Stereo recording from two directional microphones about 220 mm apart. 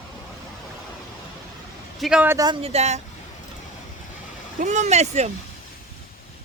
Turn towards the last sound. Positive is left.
turn(degrees=-30)  # may be behind; listen again after turning